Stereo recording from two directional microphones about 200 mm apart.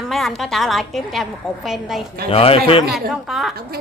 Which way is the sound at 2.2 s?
30° left (ahead or behind).